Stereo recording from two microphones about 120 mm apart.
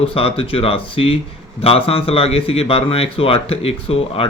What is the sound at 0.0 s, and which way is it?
A man's voice, 55° left (ahead or behind).